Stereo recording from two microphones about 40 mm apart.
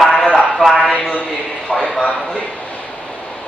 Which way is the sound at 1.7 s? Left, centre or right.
Left.